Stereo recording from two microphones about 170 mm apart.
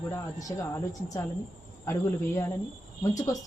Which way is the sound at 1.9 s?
15° left (ahead or behind).